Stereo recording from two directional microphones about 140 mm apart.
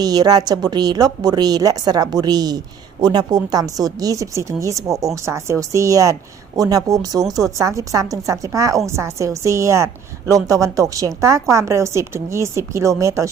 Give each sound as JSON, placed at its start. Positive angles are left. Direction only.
{"t": 0.0, "sound": "a woman's voice", "side_deg": -30}